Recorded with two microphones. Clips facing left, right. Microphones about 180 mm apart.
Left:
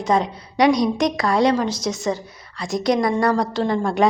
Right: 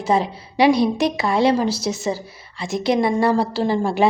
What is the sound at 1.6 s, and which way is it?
Speech, 10° right (ahead or behind).